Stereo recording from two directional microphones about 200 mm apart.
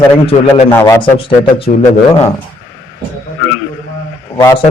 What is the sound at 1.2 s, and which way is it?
Speech, 30° left (ahead or behind).